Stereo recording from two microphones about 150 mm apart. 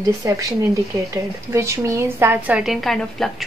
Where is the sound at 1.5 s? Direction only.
20° right (ahead or behind); by 3.3 s centre (ahead or behind).